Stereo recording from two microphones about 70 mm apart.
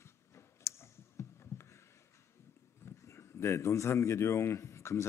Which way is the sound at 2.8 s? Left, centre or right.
Left.